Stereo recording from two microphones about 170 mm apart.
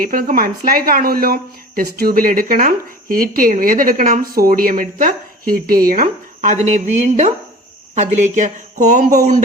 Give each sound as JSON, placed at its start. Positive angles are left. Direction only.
{"t": 0.0, "sound": "a woman's voice", "side_deg": -55}